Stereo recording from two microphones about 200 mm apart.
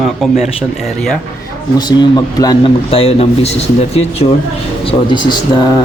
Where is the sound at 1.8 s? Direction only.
20° left (ahead or behind).